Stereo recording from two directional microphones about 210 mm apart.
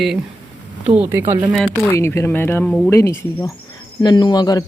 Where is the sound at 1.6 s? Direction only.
10° left (ahead or behind).